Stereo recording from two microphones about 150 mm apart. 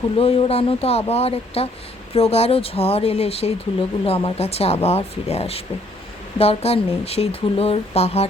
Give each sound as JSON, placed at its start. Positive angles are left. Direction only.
{"t": 0.2, "sound": "speech", "side_deg": 40}